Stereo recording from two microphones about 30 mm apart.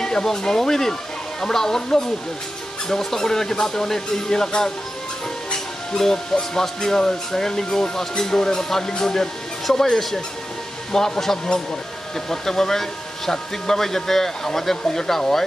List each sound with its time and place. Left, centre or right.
0.0 s speech: centre
6.5 s speech: centre